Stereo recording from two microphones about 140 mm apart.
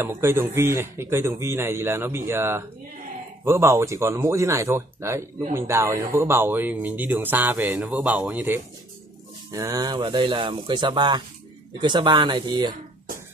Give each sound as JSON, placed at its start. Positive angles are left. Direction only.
{"t": 0.0, "sound": "speech", "side_deg": -15}
{"t": 9.5, "sound": "speech", "side_deg": -25}